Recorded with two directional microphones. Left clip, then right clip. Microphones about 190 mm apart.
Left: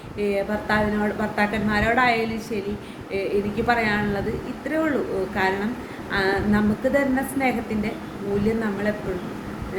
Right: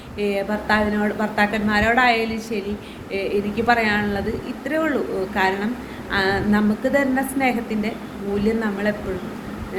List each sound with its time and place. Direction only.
0.2 s a woman's voice: 10° left (ahead or behind)
3.7 s a woman's voice: 10° left (ahead or behind)